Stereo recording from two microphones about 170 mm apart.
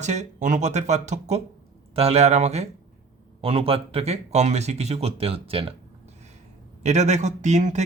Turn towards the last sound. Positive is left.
turn(degrees=-45)  # may be behind; listen again after turning